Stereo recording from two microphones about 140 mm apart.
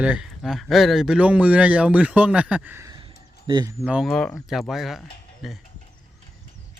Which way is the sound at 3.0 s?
35° right (ahead or behind).